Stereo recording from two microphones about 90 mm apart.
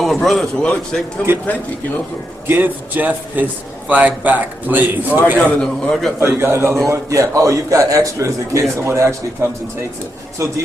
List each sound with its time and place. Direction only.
0.0 s a man's voice: centre (ahead or behind)
2.4 s speech: 20° right (ahead or behind)
5.4 s a man's voice: 5° left (ahead or behind)
6.1 s a man's voice: 25° right (ahead or behind)